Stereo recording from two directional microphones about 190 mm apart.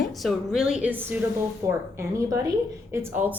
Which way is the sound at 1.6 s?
20° right (ahead or behind).